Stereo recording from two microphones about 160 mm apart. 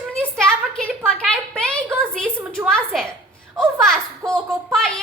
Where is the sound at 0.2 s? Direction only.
5° left (ahead or behind).